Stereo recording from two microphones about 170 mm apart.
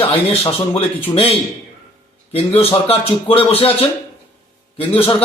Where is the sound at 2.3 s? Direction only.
35° left (ahead or behind).